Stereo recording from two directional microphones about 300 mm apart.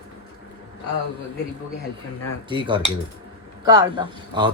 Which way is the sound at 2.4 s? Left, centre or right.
Centre.